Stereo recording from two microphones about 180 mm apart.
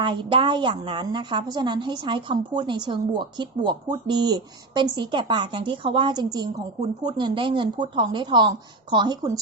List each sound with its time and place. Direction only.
0.0 s a woman's voice: 25° right (ahead or behind)